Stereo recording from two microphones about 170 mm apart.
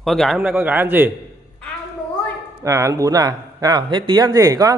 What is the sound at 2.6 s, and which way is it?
Speech, 20° right (ahead or behind).